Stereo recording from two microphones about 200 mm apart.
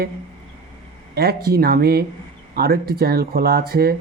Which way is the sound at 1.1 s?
50° right (ahead or behind).